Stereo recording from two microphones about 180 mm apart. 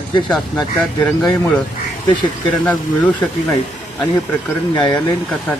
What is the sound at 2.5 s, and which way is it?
Speech, 5° left (ahead or behind).